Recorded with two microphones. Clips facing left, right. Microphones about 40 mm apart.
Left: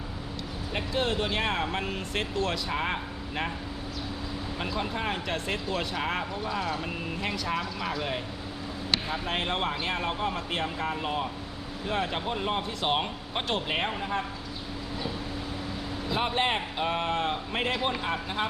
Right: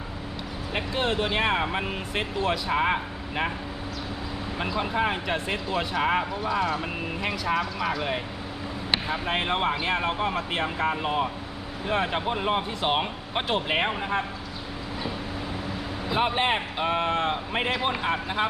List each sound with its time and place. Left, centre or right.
0.7 s speech: right
4.6 s speech: centre
16.0 s speech: centre